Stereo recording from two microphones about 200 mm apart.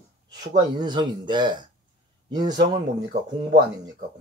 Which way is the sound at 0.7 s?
20° right (ahead or behind).